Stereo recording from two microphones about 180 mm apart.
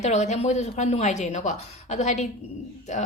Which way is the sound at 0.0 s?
40° left (ahead or behind).